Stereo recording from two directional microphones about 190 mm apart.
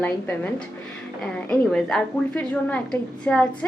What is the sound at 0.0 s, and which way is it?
A woman's voice, 10° left (ahead or behind).